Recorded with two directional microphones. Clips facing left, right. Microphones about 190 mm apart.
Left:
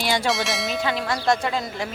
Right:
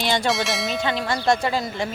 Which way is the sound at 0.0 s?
5° left (ahead or behind).